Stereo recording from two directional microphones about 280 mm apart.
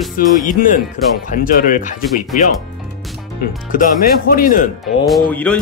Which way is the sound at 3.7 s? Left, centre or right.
Left.